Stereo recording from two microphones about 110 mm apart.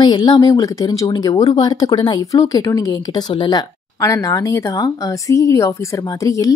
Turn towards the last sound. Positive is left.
turn(degrees=30)  # may be behind; listen again after turning